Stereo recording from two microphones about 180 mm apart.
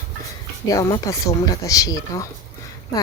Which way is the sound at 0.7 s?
20° left (ahead or behind).